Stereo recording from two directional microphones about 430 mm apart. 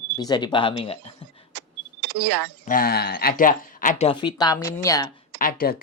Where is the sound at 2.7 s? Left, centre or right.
Centre.